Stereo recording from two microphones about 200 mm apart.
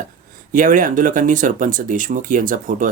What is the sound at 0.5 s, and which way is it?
Speech, 40° right (ahead or behind).